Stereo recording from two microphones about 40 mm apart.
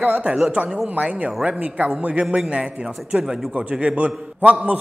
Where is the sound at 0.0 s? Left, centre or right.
Right.